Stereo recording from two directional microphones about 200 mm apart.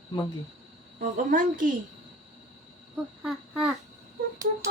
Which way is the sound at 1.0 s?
40° right (ahead or behind).